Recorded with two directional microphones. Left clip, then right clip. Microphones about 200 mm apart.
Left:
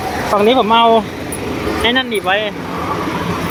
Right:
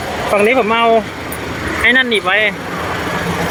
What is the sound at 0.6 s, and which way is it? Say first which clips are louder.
Speech: left 2 dB; 10° left (ahead or behind).